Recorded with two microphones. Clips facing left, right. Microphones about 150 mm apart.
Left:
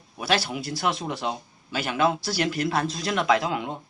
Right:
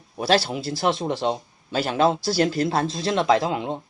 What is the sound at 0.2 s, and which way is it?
Speech, 30° right (ahead or behind).